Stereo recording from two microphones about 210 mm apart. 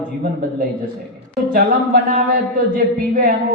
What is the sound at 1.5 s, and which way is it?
A man's voice, 40° right (ahead or behind).